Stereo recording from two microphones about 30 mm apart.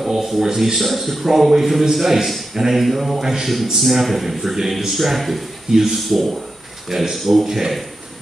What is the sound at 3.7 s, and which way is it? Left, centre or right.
Speech, centre.